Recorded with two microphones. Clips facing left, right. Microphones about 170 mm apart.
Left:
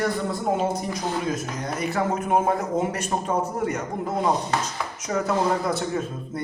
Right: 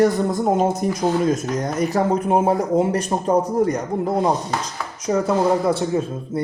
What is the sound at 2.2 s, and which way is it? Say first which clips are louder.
Speech: right 4 dB; 30° right (ahead or behind).